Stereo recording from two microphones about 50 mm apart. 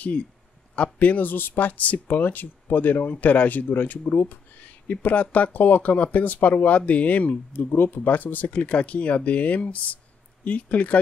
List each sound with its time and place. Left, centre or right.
0.9 s speech: left
8.5 s speech: left